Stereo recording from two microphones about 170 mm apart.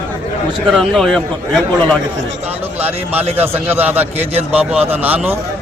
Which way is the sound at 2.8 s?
10° right (ahead or behind).